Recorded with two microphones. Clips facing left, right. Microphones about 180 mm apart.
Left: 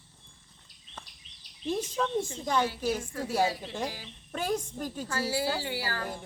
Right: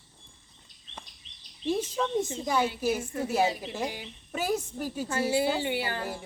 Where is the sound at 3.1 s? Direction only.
25° right (ahead or behind).